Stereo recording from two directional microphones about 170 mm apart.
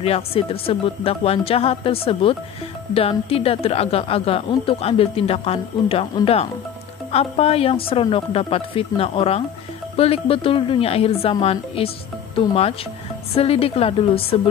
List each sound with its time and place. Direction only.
0.0 s a woman's voice: 35° left (ahead or behind)
7.1 s a woman's voice: 35° left (ahead or behind)